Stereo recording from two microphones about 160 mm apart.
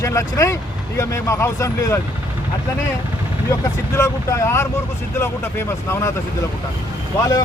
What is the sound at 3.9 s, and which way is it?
Speech, 20° left (ahead or behind).